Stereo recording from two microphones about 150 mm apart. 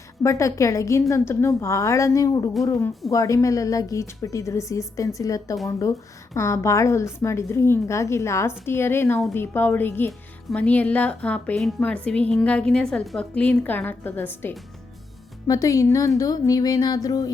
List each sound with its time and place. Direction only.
0.2 s a woman's voice: 20° left (ahead or behind)
15.4 s a woman's voice: 25° left (ahead or behind)